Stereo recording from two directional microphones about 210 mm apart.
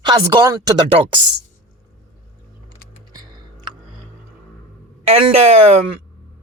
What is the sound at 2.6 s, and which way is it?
Typing, 20° right (ahead or behind).